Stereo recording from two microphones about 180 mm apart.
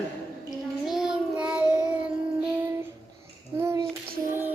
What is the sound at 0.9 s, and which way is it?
Child singing, 5° right (ahead or behind).